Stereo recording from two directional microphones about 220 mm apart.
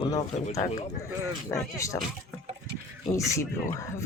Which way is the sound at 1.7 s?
15° left (ahead or behind).